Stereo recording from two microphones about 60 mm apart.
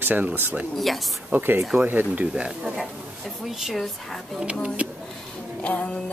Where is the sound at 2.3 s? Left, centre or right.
Centre.